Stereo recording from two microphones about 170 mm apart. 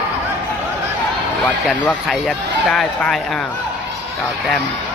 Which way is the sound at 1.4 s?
5° left (ahead or behind).